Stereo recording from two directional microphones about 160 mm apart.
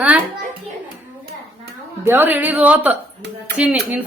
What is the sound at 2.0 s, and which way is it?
A woman's voice, 10° right (ahead or behind).